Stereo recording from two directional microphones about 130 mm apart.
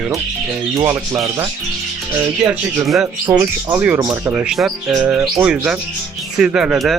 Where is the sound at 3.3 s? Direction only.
20° right (ahead or behind).